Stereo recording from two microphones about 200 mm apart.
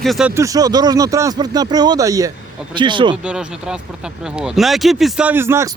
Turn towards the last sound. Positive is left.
turn(degrees=-10)  # may be behind; listen again after turning